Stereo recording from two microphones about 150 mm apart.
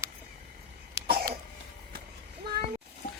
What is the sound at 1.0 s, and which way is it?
Cough, 20° right (ahead or behind).